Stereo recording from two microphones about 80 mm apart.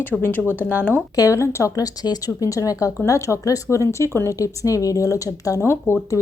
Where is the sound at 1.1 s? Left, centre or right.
Left.